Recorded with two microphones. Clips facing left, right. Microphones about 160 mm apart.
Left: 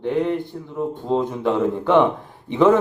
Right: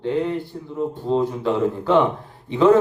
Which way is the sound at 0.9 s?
20° left (ahead or behind).